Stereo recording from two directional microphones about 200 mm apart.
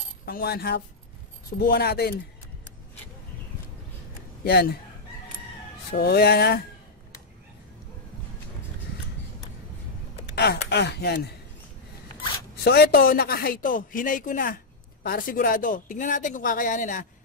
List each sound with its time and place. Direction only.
0.2 s speech: 50° left (ahead or behind)
4.5 s speech: 55° left (ahead or behind)
5.9 s speech: 55° left (ahead or behind)
10.3 s speech: 55° left (ahead or behind)
12.6 s speech: 55° left (ahead or behind)